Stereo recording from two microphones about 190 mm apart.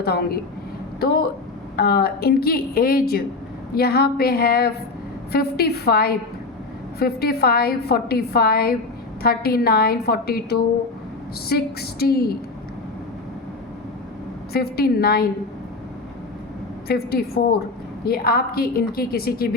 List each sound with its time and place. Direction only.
0.0 s a woman's voice: 55° left (ahead or behind)
14.5 s a woman's voice: 55° left (ahead or behind)
16.9 s a woman's voice: 55° left (ahead or behind)